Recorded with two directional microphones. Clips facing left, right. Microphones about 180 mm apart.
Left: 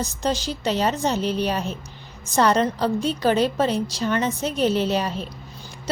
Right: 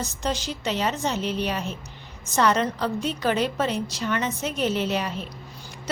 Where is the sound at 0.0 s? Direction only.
35° left (ahead or behind).